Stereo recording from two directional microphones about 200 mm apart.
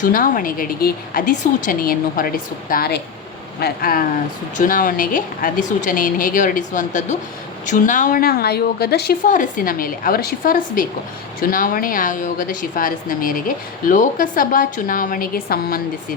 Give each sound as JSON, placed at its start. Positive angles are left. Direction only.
{"t": 0.0, "sound": "a woman's voice", "side_deg": 40}